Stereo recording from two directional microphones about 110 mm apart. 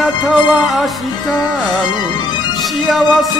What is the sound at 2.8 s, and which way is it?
Music, centre (ahead or behind).